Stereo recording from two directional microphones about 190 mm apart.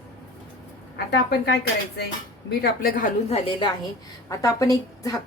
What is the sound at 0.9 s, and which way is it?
A woman's voice, 60° left (ahead or behind).